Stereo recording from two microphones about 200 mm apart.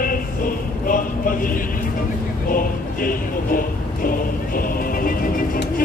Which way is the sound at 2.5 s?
45° left (ahead or behind).